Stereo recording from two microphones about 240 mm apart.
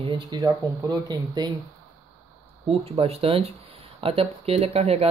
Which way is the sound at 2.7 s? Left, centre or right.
Right.